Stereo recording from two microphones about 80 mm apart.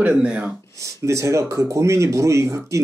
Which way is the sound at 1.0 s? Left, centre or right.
Right.